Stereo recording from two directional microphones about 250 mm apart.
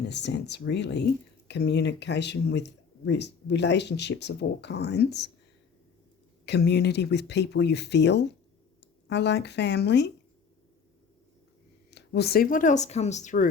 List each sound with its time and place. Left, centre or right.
0.1 s speech: left
6.4 s speech: left
11.9 s speech: left